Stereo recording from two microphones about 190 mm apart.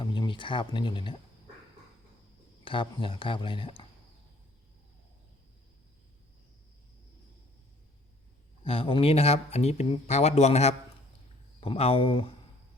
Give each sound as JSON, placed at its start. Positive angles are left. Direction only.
{"t": 0.0, "sound": "speech", "side_deg": 25}
{"t": 2.6, "sound": "speech", "side_deg": 25}
{"t": 8.6, "sound": "speech", "side_deg": 30}